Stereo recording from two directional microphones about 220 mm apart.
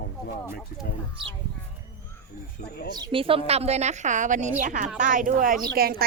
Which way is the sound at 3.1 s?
25° right (ahead or behind).